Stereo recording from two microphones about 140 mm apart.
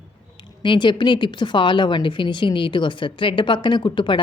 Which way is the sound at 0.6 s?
35° left (ahead or behind).